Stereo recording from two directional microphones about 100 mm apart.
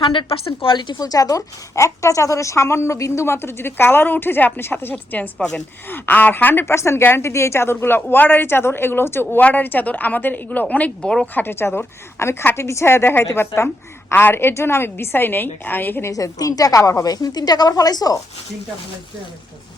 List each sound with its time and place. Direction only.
0.1 s a woman's voice: 65° left (ahead or behind)
0.9 s a woman's voice: 35° left (ahead or behind); by 11.3 s 5° left (ahead or behind)
11.3 s a woman's voice: 20° left (ahead or behind); by 18.2 s 40° left (ahead or behind)